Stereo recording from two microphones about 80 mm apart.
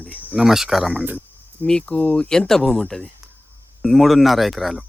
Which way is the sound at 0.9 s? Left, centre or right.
Centre.